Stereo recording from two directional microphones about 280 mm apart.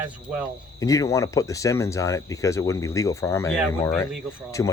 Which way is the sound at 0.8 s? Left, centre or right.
Centre.